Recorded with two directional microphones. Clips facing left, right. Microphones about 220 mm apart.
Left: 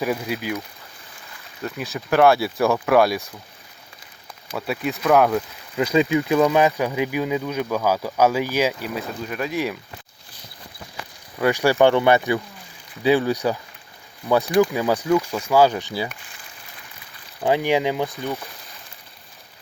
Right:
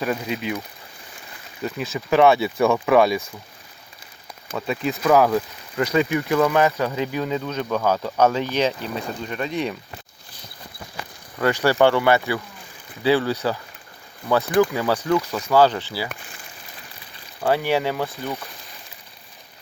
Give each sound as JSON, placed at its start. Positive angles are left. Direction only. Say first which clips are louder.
{"t": 0.0, "sound": "speech", "louder": "even", "side_deg": 5}
{"t": 1.6, "sound": "speech", "louder": "right 2 dB", "side_deg": 0}
{"t": 4.5, "sound": "speech", "louder": "right 1 dB", "side_deg": 5}
{"t": 5.7, "sound": "speech", "louder": "left 2 dB", "side_deg": 15}
{"t": 11.3, "sound": "speech", "louder": "left 1 dB", "side_deg": 15}
{"t": 17.4, "sound": "speech", "louder": "left 1 dB", "side_deg": 15}